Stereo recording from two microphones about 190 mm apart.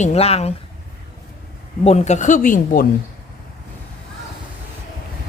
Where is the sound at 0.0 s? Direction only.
35° left (ahead or behind).